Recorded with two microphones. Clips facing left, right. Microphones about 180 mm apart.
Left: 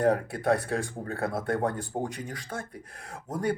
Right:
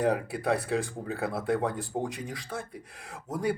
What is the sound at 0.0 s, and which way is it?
Speech, centre (ahead or behind).